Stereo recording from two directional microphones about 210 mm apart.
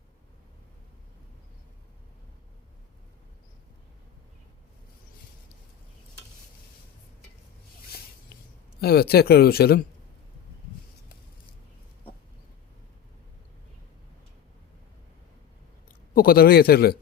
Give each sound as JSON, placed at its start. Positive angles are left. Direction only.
{"t": 8.3, "sound": "a sound", "side_deg": 50}
{"t": 8.8, "sound": "speech", "side_deg": 50}
{"t": 16.1, "sound": "speech", "side_deg": 45}